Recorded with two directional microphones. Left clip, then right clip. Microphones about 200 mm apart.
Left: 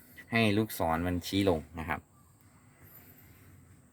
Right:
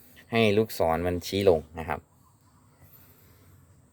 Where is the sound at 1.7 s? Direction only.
25° right (ahead or behind).